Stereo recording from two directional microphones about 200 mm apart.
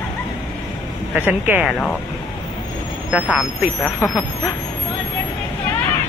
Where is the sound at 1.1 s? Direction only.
10° right (ahead or behind).